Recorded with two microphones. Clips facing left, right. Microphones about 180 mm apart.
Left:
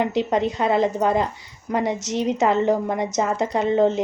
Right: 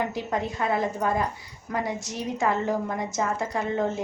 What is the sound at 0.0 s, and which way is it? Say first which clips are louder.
A woman's voice: left 7 dB; 20° left (ahead or behind).